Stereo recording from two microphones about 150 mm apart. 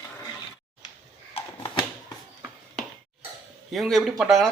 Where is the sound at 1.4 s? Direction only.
40° left (ahead or behind).